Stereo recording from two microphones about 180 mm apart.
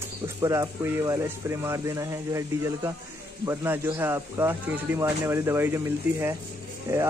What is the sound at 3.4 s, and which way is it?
Speech, 15° right (ahead or behind).